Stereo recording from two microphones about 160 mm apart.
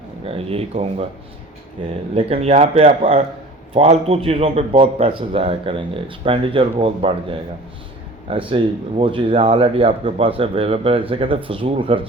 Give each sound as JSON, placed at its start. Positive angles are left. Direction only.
{"t": 0.3, "sound": "a man's voice", "side_deg": -35}